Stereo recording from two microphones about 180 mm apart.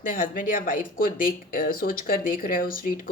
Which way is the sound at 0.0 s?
50° left (ahead or behind).